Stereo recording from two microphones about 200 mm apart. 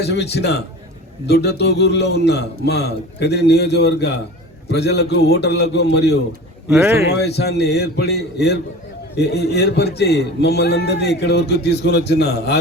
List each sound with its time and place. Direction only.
0.0 s a man's voice: 55° left (ahead or behind)
6.7 s a man's voice: 10° right (ahead or behind)
7.2 s a man's voice: 55° left (ahead or behind)